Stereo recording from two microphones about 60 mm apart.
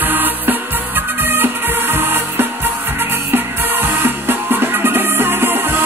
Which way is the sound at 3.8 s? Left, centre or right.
Right.